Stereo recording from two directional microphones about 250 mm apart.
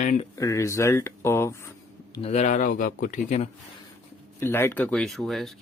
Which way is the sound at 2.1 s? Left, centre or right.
Left.